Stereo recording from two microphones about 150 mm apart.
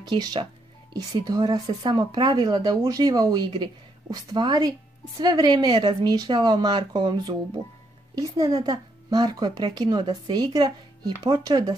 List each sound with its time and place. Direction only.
0.0 s speech: 30° right (ahead or behind)
8.5 s speech: 25° right (ahead or behind)